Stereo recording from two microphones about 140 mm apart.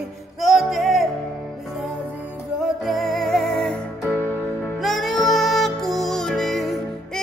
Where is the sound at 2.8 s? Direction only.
Centre (ahead or behind).